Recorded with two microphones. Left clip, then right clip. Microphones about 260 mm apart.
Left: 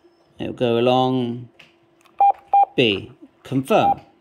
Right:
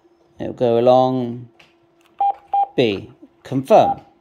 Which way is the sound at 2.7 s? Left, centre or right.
Centre.